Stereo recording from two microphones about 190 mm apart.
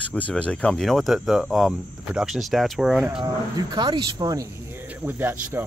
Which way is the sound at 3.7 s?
20° right (ahead or behind).